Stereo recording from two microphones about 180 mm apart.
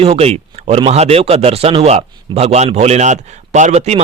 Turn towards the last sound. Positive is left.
turn(degrees=-35)  # may be behind; listen again after turning